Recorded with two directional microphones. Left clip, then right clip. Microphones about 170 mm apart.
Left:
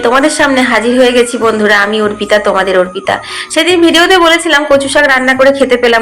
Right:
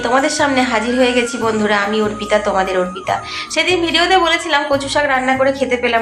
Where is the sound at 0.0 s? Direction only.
25° left (ahead or behind).